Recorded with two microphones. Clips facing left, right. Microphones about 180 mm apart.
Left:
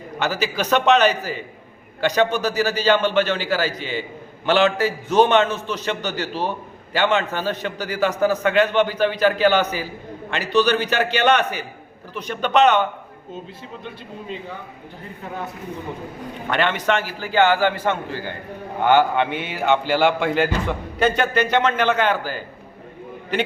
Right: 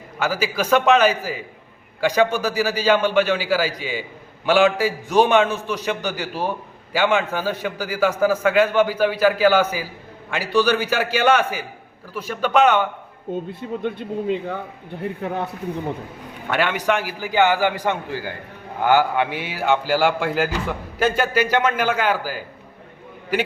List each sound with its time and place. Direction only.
0.2 s a man's voice: 10° right (ahead or behind)
13.5 s speech: 55° right (ahead or behind)
16.5 s a man's voice: 10° right (ahead or behind)